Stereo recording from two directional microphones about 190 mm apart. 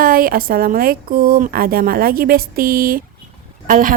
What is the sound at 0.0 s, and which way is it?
A woman's voice, 50° right (ahead or behind).